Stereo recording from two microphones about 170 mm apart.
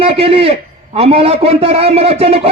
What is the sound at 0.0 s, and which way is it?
A man's voice, 35° right (ahead or behind).